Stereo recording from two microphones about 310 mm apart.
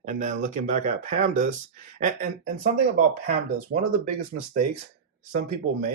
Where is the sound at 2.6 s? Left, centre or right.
Right.